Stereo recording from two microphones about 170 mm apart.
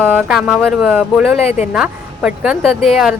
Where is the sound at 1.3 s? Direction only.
40° left (ahead or behind).